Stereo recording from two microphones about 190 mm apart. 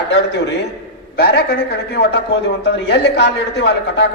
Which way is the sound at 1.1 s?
55° left (ahead or behind).